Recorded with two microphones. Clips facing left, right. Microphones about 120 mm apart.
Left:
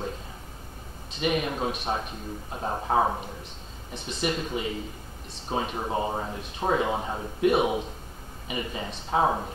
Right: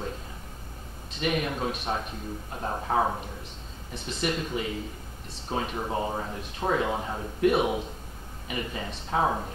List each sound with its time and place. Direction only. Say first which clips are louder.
1.2 s speech: left 1 dB; 10° left (ahead or behind)
4.2 s speech: left 1 dB; 5° left (ahead or behind)